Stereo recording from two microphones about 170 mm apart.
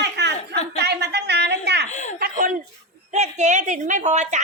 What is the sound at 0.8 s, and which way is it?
A woman's voice, 80° right.